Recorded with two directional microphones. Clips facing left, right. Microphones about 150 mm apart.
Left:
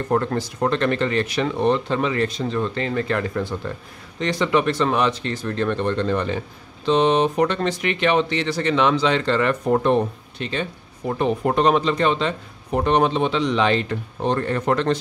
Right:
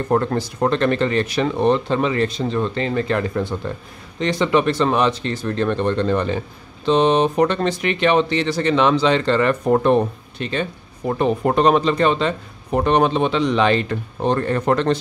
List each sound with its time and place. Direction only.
0.1 s speech: 35° right (ahead or behind)